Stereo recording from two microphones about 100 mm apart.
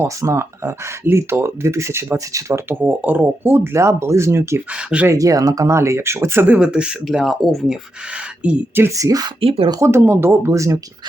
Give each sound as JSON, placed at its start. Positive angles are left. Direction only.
{"t": 0.0, "sound": "speech", "side_deg": -30}
{"t": 2.7, "sound": "speech", "side_deg": -15}
{"t": 4.7, "sound": "speech", "side_deg": -10}
{"t": 5.0, "sound": "speech", "side_deg": -35}
{"t": 9.0, "sound": "speech", "side_deg": -35}
{"t": 9.4, "sound": "speech", "side_deg": -65}
{"t": 9.8, "sound": "speech", "side_deg": -25}